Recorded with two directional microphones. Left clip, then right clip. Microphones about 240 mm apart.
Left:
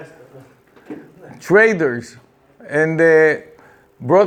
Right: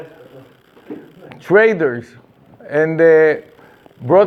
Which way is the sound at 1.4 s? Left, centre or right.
Left.